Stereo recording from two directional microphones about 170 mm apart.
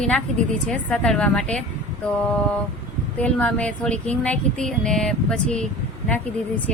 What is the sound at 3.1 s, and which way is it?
A woman's voice, 10° left (ahead or behind).